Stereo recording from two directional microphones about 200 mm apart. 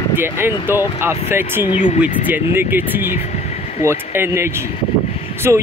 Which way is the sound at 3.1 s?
35° left (ahead or behind).